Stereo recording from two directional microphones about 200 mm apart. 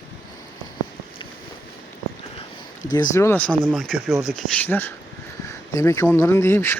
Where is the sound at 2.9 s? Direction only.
15° left (ahead or behind).